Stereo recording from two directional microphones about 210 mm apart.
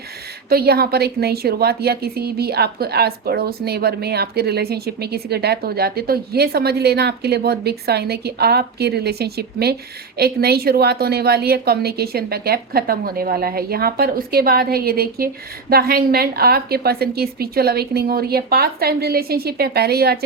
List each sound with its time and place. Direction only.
0.5 s a woman's voice: 45° right (ahead or behind)